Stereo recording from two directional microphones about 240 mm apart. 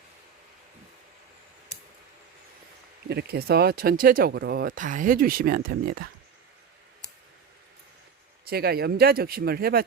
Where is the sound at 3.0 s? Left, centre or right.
Right.